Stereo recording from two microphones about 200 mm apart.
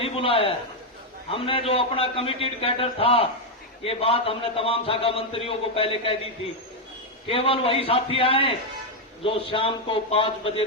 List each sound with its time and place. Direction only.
0.0 s a sound: 30° left (ahead or behind)
1.3 s a man's voice: 25° left (ahead or behind)
7.3 s a man's voice: 25° left (ahead or behind)